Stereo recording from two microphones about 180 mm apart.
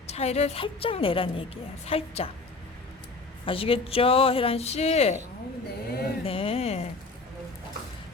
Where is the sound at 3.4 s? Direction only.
30° left (ahead or behind).